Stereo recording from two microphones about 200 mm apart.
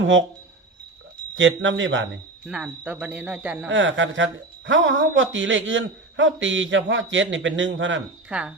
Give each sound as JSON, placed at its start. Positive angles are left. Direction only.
{"t": 0.0, "sound": "speech", "side_deg": -70}
{"t": 1.4, "sound": "speech", "side_deg": -65}
{"t": 2.5, "sound": "speech", "side_deg": -5}
{"t": 3.7, "sound": "speech", "side_deg": -70}
{"t": 8.3, "sound": "speech", "side_deg": -5}